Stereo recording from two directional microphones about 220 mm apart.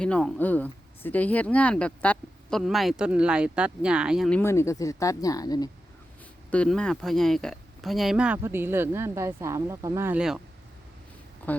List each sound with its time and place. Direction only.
0.0 s speech: 5° left (ahead or behind)
6.5 s speech: 5° left (ahead or behind)
11.5 s speech: 5° left (ahead or behind)